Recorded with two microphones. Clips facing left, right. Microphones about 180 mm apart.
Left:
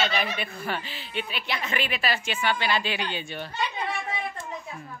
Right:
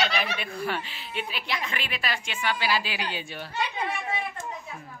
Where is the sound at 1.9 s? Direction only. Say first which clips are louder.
Left 2 dB; 30° left (ahead or behind).